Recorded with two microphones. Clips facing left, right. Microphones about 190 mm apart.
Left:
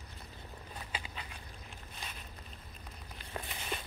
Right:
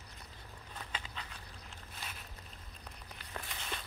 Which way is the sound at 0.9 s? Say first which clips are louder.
Left 1 dB; 10° left (ahead or behind).